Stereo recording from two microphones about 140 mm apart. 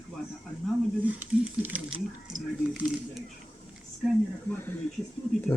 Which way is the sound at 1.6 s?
10° right (ahead or behind).